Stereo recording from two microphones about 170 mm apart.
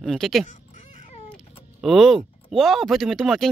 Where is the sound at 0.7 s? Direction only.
45° left (ahead or behind).